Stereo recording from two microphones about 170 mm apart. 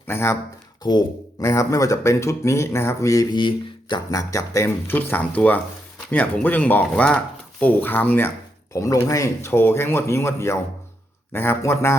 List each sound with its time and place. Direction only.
0.1 s speech: 15° left (ahead or behind)
0.8 s speech: 25° left (ahead or behind)